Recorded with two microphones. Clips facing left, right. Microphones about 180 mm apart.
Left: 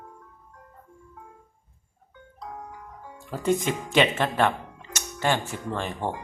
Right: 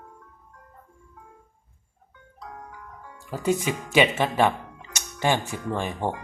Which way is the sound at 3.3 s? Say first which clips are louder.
Even; 5° right (ahead or behind).